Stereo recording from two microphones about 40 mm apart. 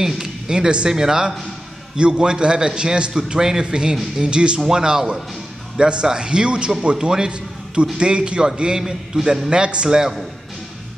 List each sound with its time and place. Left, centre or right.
0.0 s a woman's voice: centre